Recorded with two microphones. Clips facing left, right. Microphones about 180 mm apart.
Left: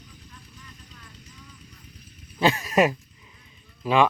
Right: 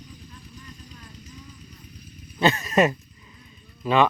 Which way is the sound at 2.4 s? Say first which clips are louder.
Even; 10° left (ahead or behind).